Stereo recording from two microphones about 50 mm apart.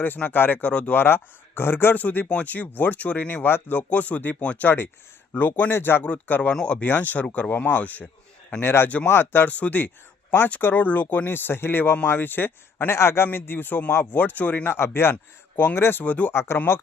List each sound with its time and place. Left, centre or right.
0.0 s speech: left
0.6 s speech: left
0.9 s speech: left
2.0 s speech: left
5.3 s speech: left
6.0 s speech: left
6.5 s speech: left
6.8 s speech: left
8.6 s speech: left
9.5 s speech: left
14.7 s speech: left
16.3 s speech: left